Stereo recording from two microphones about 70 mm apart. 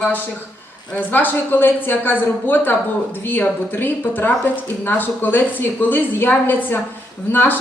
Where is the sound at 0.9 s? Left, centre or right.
Left.